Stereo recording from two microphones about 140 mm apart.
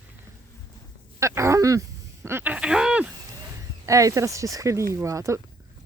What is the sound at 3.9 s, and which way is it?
Speech, 25° right (ahead or behind).